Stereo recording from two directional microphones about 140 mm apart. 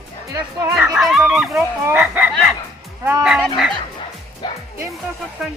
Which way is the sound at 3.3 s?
Centre (ahead or behind).